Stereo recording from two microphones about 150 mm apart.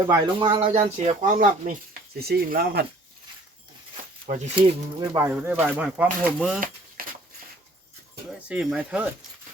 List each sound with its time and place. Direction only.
0.1 s speech: 35° right (ahead or behind); by 2.8 s 90° right
4.3 s speech: 50° right (ahead or behind)
4.9 s speech: 20° right (ahead or behind)
7.0 s a sound: 75° right (ahead or behind)
8.4 s speech: 10° right (ahead or behind)